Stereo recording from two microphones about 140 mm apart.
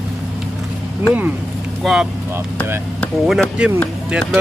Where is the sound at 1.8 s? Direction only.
5° right (ahead or behind).